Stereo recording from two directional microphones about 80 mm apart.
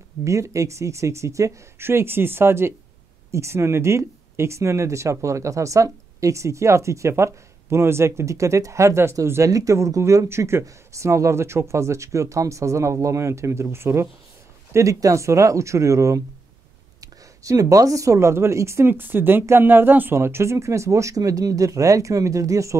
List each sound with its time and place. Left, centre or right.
0.2 s speech: right